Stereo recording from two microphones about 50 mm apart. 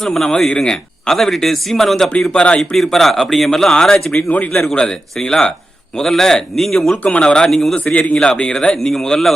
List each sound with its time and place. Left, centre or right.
0.0 s speech: centre
2.3 s speech: left
2.6 s speech: centre
4.2 s a man's voice: left
4.7 s speech: centre
7.0 s speech: left